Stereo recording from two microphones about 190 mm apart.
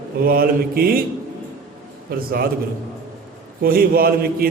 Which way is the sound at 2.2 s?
50° right (ahead or behind).